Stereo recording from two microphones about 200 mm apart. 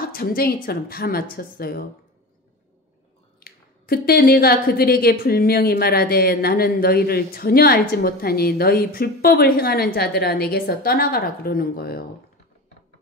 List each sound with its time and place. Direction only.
0.1 s speech: 50° left (ahead or behind)
3.3 s speech: 50° left (ahead or behind)